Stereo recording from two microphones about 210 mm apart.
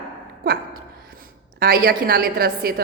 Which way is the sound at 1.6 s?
45° right (ahead or behind).